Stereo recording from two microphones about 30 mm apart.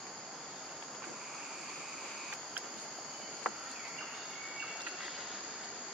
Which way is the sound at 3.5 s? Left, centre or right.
Left.